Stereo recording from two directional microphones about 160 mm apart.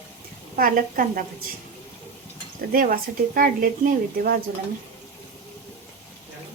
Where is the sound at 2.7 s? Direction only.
60° right (ahead or behind).